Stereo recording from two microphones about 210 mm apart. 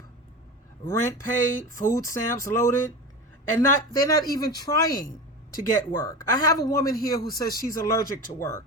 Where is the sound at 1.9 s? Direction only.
15° left (ahead or behind).